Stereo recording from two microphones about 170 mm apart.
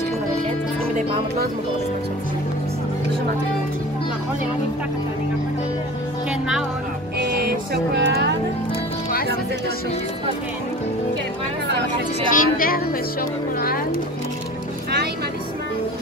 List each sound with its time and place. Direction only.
7.2 s music: 70° right (ahead or behind)
12.3 s speech: 55° left (ahead or behind)